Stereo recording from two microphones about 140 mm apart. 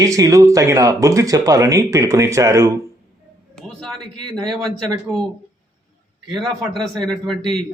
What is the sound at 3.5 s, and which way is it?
Speech, 5° left (ahead or behind).